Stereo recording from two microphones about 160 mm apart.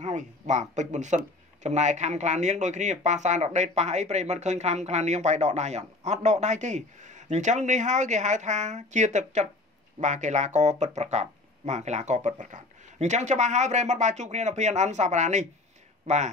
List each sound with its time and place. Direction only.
0.0 s speech: 50° right (ahead or behind)